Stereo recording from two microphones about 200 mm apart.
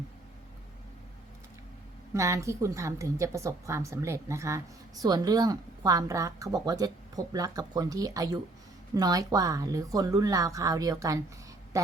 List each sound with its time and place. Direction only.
2.1 s a woman's voice: 15° right (ahead or behind)